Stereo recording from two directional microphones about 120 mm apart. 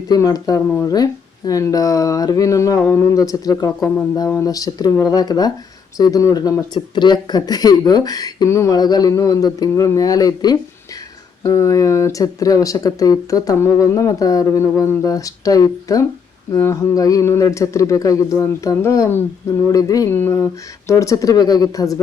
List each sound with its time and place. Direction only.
0.1 s speech: 30° left (ahead or behind)
20.1 s speech: 20° left (ahead or behind)